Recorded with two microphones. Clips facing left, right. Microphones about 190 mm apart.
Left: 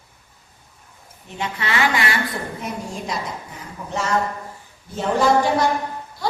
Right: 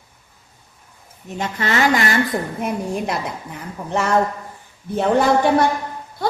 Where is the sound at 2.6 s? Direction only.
60° right (ahead or behind).